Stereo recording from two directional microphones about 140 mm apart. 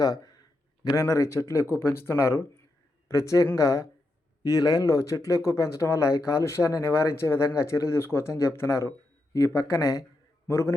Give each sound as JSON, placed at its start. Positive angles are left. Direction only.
{"t": 0.9, "sound": "a man's voice", "side_deg": 25}